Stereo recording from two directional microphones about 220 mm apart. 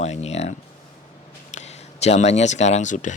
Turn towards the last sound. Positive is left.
turn(degrees=35)  # may be behind; listen again after turning